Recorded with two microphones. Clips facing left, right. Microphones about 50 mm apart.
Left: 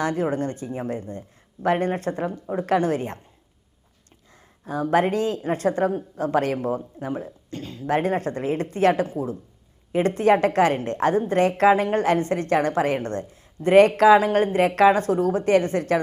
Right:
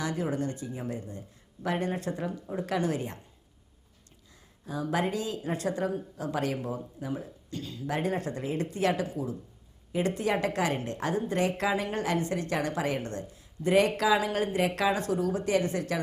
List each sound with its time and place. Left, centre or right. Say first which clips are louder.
0.0 s a woman's voice: left 7 dB; left
4.6 s a woman's voice: left 9 dB; left